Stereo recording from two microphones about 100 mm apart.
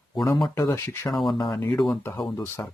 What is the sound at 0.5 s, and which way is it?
Speech, 30° left (ahead or behind).